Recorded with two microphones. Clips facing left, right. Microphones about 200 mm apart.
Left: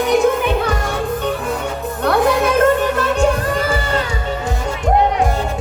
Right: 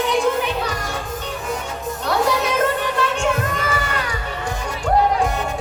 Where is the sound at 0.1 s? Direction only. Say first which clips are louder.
Left 5 dB; 55° left (ahead or behind).